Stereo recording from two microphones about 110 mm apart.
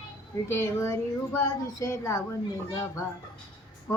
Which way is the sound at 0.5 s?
25° left (ahead or behind).